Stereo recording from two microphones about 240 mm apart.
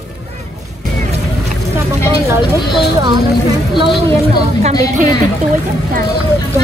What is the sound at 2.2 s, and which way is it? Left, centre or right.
Speech, centre.